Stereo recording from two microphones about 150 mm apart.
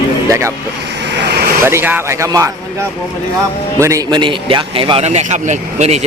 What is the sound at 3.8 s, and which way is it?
A man's voice, 20° right (ahead or behind).